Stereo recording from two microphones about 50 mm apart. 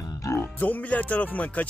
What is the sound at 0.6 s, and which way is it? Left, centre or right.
Speech, left.